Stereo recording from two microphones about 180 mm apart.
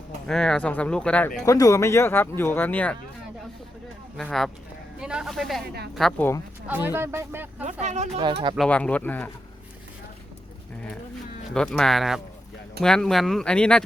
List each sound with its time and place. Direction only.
0.3 s speech: 5° left (ahead or behind)
1.5 s speech: 20° left (ahead or behind)
4.2 s speech: 5° left (ahead or behind)
6.7 s speech: 10° right (ahead or behind)
7.6 s speech: 40° right (ahead or behind)
8.5 s speech: 5° left (ahead or behind)
11.5 s speech: 5° left (ahead or behind)